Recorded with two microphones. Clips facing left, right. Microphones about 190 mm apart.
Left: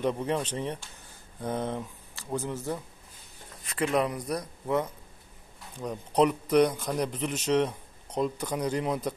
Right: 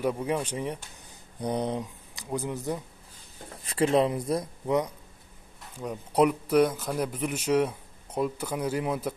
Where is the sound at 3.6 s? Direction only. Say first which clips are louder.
Right 4 dB; 30° right (ahead or behind).